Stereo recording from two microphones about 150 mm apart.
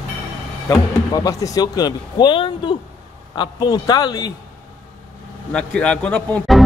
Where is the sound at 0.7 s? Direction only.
25° left (ahead or behind).